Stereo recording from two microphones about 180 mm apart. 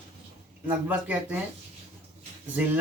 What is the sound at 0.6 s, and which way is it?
Speech, 10° right (ahead or behind).